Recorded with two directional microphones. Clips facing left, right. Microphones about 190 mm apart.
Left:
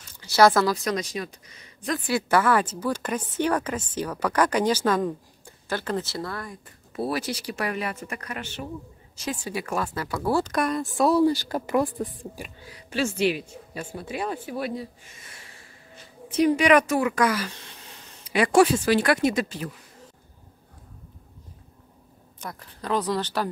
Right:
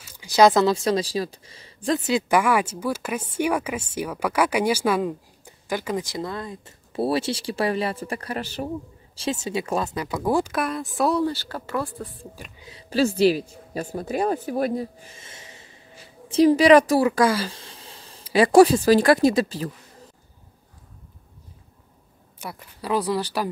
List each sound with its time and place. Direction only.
0.0 s speech: 15° right (ahead or behind)
10.5 s speech: centre (ahead or behind)
11.2 s speech: 15° left (ahead or behind)
12.5 s speech: 20° right (ahead or behind)
12.9 s speech: 35° right (ahead or behind); by 15.7 s 20° right (ahead or behind)
16.3 s speech: 30° right (ahead or behind)
22.4 s speech: 10° right (ahead or behind)